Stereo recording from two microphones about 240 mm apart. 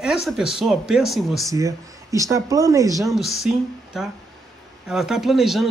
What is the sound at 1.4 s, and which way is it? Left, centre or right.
Speech, centre.